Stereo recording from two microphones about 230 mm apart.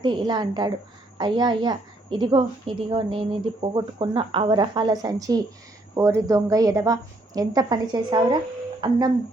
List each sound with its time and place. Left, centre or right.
0.0 s a woman's voice: centre